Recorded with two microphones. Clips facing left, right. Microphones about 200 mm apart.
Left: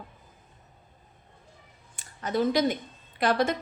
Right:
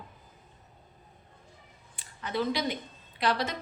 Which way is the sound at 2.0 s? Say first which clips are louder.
Left 5 dB; 45° left (ahead or behind).